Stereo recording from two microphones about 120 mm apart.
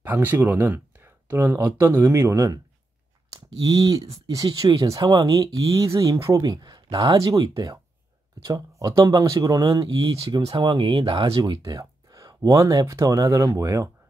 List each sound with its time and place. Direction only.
0.0 s speech: 15° right (ahead or behind)
3.3 s speech: 45° right (ahead or behind)
4.6 s speech: 30° right (ahead or behind)